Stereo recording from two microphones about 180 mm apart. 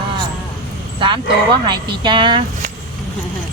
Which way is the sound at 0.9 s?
25° right (ahead or behind).